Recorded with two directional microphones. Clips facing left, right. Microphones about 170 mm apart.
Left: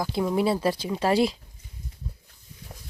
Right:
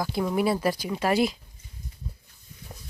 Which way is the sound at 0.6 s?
25° left (ahead or behind).